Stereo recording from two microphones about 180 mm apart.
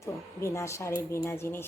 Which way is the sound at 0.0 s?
15° left (ahead or behind).